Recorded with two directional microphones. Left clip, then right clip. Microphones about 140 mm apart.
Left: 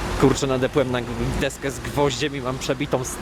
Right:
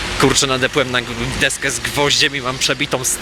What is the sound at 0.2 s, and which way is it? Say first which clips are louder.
Speech: right 5 dB; 10° left (ahead or behind).